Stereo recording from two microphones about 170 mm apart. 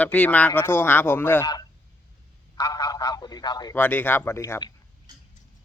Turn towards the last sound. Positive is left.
turn(degrees=15)  # may be behind; listen again after turning